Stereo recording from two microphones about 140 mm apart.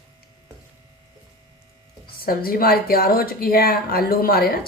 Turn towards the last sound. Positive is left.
turn(degrees=90)